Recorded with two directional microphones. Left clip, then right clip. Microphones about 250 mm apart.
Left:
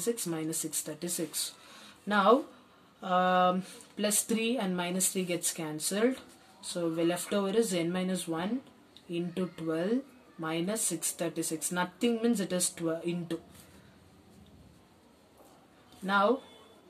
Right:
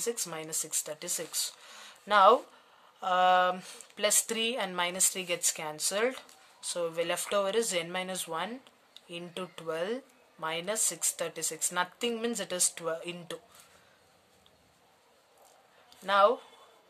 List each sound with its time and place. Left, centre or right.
0.3 s speech: right
16.1 s speech: right